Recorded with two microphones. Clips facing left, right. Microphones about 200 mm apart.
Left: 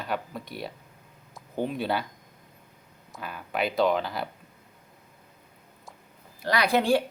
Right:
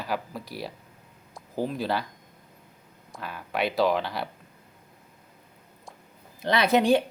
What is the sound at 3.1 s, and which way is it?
Speech, centre (ahead or behind).